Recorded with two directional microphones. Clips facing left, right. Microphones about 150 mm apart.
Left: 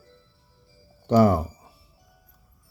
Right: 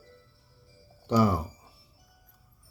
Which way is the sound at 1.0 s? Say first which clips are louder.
Left 6 dB; 55° left (ahead or behind).